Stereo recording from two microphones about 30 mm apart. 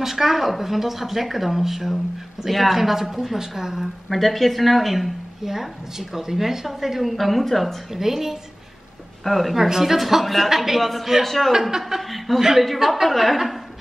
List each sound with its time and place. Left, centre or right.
0.0 s speech: centre
4.1 s a woman's voice: centre
7.9 s speech: centre
9.2 s a woman's voice: centre
9.6 s a woman's voice: centre
12.0 s chuckle: centre
12.4 s a woman's voice: centre